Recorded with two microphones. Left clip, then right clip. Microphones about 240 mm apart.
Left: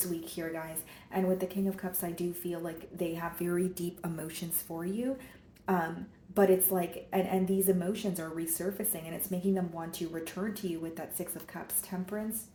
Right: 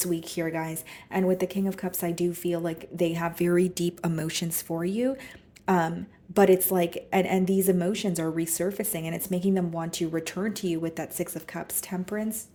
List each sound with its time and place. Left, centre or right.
0.0 s a woman's voice: right